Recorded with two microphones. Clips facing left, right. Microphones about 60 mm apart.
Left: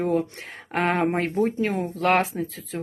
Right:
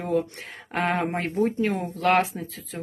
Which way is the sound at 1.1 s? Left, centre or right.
Centre.